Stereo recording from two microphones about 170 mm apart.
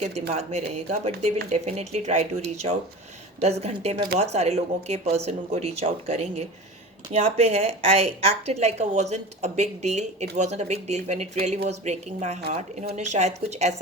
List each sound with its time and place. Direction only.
0.0 s a woman's voice: 40° right (ahead or behind)